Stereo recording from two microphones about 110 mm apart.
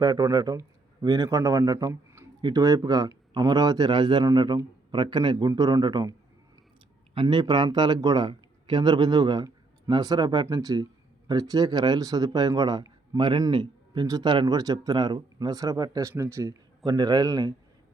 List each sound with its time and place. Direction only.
0.0 s a man's voice: 35° right (ahead or behind)